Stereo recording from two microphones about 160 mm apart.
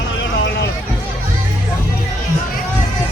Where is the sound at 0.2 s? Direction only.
90° left.